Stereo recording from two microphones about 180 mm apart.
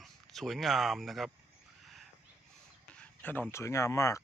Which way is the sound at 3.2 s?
10° left (ahead or behind).